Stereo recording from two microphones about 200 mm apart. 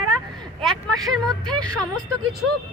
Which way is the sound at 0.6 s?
Centre (ahead or behind).